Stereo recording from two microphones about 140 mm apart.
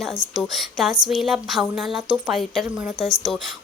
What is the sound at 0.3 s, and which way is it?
A woman's voice, centre (ahead or behind).